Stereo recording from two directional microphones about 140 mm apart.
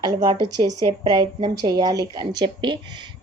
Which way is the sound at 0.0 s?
30° right (ahead or behind).